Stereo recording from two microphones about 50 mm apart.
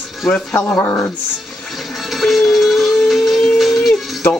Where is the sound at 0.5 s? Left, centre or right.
Left.